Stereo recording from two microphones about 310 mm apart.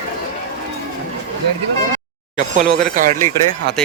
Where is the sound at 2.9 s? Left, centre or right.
Right.